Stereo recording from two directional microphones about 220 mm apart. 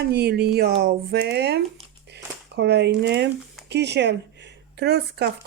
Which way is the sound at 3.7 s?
50° right (ahead or behind).